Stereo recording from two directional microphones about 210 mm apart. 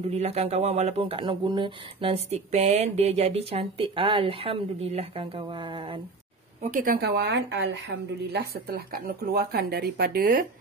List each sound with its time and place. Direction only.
0.1 s speech: 30° right (ahead or behind)
6.6 s speech: 40° right (ahead or behind)